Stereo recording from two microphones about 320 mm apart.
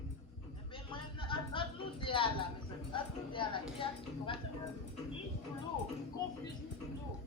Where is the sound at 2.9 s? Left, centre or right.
Centre.